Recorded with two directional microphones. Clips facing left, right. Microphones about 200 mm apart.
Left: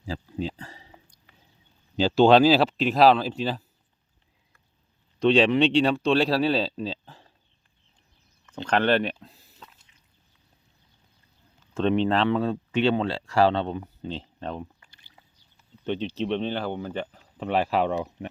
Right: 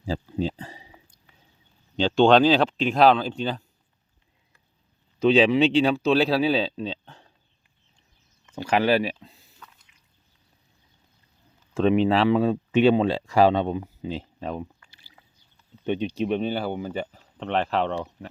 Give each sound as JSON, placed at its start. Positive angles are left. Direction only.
{"t": 0.0, "sound": "a sound", "side_deg": -30}
{"t": 2.0, "sound": "speech", "side_deg": 5}
{"t": 5.2, "sound": "speech", "side_deg": 0}
{"t": 8.4, "sound": "speech", "side_deg": -10}
{"t": 9.2, "sound": "a sound", "side_deg": 0}
{"t": 11.7, "sound": "speech", "side_deg": -5}
{"t": 15.8, "sound": "speech", "side_deg": -15}
{"t": 17.3, "sound": "speech", "side_deg": 5}